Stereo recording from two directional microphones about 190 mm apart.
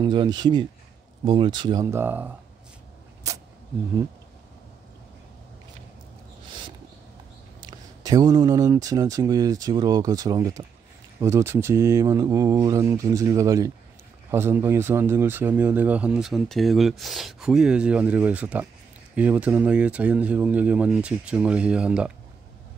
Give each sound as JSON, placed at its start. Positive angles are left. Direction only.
{"t": 0.0, "sound": "speech", "side_deg": -25}
{"t": 3.3, "sound": "a sound", "side_deg": -15}
{"t": 7.6, "sound": "speech", "side_deg": -20}